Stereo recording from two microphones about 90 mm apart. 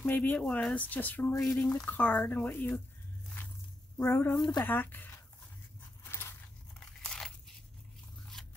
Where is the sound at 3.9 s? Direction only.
25° left (ahead or behind).